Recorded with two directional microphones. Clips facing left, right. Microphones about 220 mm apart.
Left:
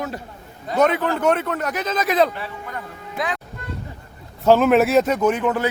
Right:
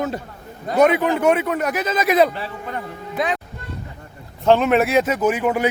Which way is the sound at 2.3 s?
30° right (ahead or behind).